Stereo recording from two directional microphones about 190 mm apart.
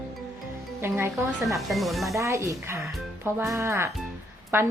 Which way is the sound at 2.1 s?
15° right (ahead or behind).